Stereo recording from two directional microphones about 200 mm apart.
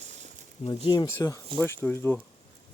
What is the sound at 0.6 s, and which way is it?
Speech, 20° left (ahead or behind).